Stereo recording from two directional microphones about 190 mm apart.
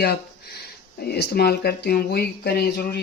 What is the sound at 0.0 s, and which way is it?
Speech, 55° left (ahead or behind).